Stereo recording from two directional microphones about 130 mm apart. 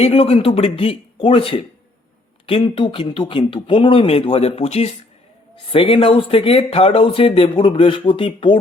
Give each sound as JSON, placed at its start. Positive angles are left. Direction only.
{"t": 0.0, "sound": "speech", "side_deg": 50}